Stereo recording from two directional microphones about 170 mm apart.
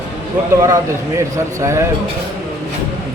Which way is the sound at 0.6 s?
20° right (ahead or behind).